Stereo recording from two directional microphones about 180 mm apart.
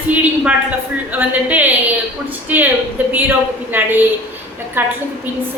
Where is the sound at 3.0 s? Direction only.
10° right (ahead or behind).